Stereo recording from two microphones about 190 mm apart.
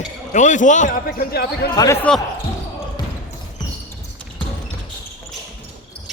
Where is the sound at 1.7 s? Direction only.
20° left (ahead or behind).